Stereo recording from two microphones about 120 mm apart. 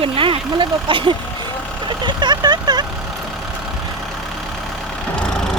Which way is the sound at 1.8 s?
40° right (ahead or behind).